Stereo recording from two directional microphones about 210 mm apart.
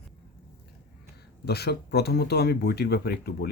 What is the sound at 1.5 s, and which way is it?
Speech, 50° left (ahead or behind).